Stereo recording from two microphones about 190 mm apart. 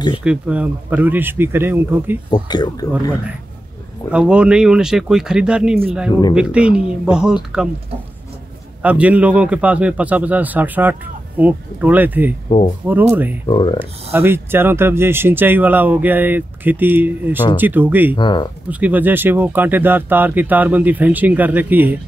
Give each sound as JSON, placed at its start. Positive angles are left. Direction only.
{"t": 0.2, "sound": "speech", "side_deg": -5}
{"t": 2.3, "sound": "speech", "side_deg": 20}
{"t": 4.1, "sound": "speech", "side_deg": -5}
{"t": 8.8, "sound": "speech", "side_deg": -5}
{"t": 12.4, "sound": "speech", "side_deg": 30}
{"t": 13.1, "sound": "speech", "side_deg": -10}
{"t": 13.5, "sound": "speech", "side_deg": 25}
{"t": 13.7, "sound": "speech", "side_deg": -10}
{"t": 18.1, "sound": "speech", "side_deg": 25}
{"t": 18.7, "sound": "speech", "side_deg": -10}